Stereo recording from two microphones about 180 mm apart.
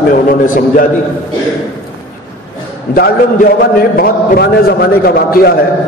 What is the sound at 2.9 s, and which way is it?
A man's voice, 60° left (ahead or behind).